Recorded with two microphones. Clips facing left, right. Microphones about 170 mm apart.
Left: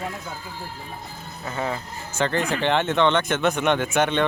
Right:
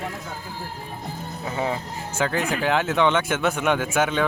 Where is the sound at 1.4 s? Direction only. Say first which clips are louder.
Right 1 dB; 15° right (ahead or behind).